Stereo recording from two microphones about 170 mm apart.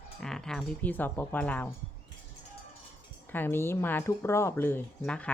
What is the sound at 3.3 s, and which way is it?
Speech, 15° left (ahead or behind).